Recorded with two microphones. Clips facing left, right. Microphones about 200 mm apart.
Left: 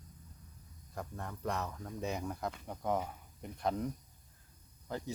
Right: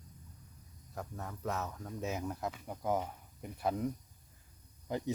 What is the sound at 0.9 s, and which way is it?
Speech, 5° right (ahead or behind).